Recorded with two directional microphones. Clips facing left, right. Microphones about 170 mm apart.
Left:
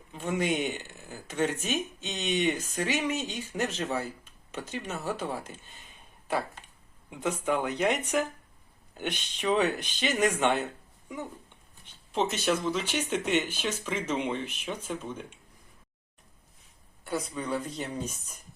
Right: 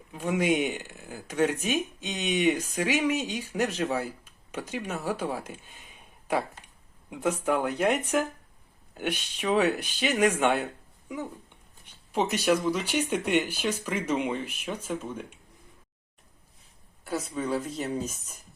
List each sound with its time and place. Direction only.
0.1 s speech: 10° right (ahead or behind)
9.0 s speech: 5° right (ahead or behind)
12.1 s speech: 10° right (ahead or behind)
17.0 s speech: centre (ahead or behind)